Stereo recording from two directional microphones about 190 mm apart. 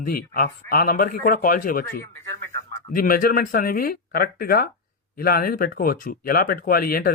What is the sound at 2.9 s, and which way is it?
Speech, 50° left (ahead or behind).